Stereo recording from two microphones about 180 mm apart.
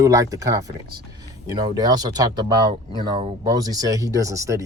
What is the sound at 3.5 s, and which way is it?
Speech, 20° right (ahead or behind).